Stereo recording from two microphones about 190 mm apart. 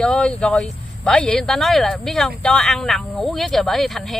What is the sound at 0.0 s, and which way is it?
Speech, 5° left (ahead or behind).